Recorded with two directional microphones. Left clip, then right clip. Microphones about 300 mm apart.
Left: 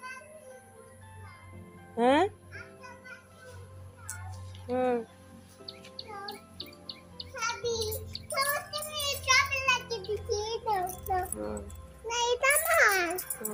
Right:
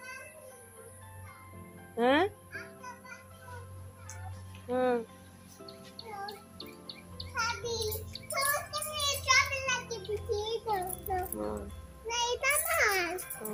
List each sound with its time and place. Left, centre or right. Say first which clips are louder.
2.0 s music: left 2 dB; centre
4.7 s music: left 1 dB; centre
6.0 s music: even; left
7.3 s music: even; centre
8.3 s child singing: left 1 dB; centre
11.2 s music: left 1 dB; centre
12.0 s child singing: left 4 dB; centre